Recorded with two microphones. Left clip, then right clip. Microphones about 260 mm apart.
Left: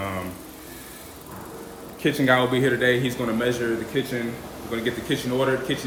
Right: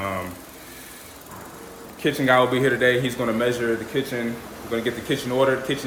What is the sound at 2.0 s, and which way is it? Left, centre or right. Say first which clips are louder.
A man's voice: right 2 dB; centre.